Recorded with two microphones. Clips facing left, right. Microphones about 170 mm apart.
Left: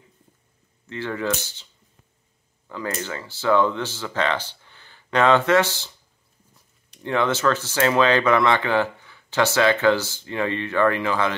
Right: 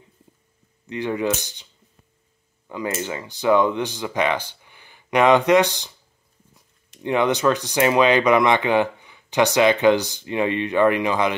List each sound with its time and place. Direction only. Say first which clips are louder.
0.8 s speech: right 3 dB; 15° right (ahead or behind)
3.0 s speech: right 3 dB; 15° right (ahead or behind)
7.0 s speech: right 2 dB; 15° right (ahead or behind)